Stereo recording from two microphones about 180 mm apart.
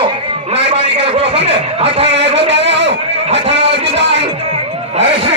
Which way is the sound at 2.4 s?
75° right (ahead or behind).